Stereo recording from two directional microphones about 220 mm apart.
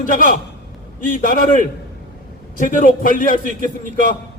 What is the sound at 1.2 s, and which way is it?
A man's voice, 40° left (ahead or behind).